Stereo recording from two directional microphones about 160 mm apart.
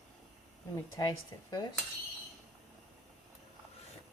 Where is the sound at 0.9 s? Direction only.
25° left (ahead or behind).